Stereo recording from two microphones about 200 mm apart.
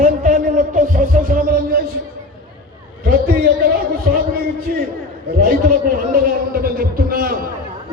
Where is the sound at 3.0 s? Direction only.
45° right (ahead or behind).